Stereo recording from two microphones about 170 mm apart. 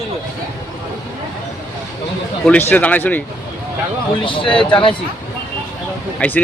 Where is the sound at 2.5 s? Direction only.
10° left (ahead or behind).